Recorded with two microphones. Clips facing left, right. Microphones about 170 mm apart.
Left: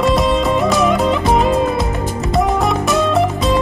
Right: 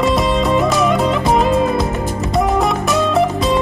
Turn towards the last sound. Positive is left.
turn(degrees=0)  # may be behind; listen again after turning